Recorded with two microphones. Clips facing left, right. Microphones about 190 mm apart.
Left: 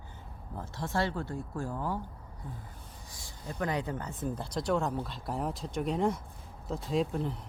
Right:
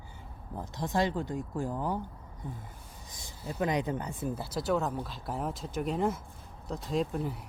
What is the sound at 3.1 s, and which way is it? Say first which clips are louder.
Speech: right 3 dB; 20° right (ahead or behind).